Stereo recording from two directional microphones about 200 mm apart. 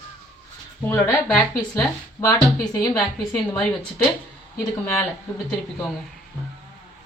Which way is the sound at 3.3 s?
5° left (ahead or behind).